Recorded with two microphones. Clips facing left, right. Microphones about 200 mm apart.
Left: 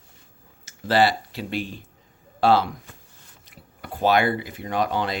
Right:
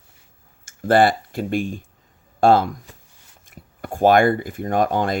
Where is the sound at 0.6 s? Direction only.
50° right (ahead or behind).